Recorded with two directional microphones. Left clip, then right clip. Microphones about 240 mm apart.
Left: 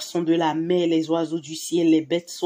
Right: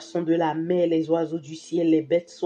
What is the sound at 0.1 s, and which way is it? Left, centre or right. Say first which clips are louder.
Speech: left 1 dB; left.